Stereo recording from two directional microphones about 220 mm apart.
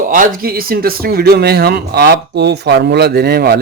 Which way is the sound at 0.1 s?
40° right (ahead or behind).